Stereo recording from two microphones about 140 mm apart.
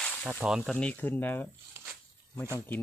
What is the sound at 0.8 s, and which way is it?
Speech, 10° left (ahead or behind).